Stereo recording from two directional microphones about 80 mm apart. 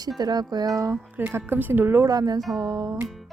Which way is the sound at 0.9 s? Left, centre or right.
Right.